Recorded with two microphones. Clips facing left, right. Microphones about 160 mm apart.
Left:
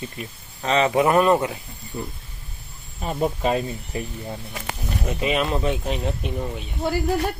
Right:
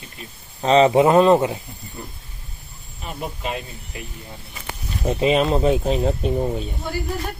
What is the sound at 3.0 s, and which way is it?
Speech, 35° left (ahead or behind).